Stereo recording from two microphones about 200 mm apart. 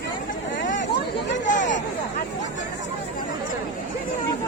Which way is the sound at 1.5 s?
40° left (ahead or behind).